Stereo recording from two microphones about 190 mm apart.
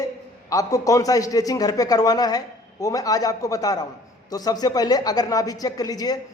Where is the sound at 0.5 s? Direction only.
15° left (ahead or behind).